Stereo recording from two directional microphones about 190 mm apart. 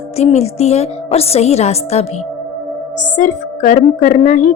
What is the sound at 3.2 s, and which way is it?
Speech, 40° left (ahead or behind).